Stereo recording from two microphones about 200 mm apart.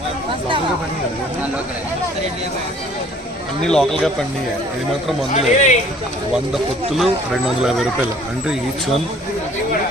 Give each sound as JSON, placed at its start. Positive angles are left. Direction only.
{"t": 3.6, "sound": "speech", "side_deg": 0}
{"t": 5.3, "sound": "speech", "side_deg": 35}
{"t": 6.5, "sound": "speech", "side_deg": 0}